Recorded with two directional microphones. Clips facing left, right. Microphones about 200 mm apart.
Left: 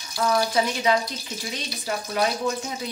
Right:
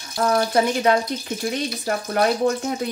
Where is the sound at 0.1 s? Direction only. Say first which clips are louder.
Right 3 dB; 55° right (ahead or behind).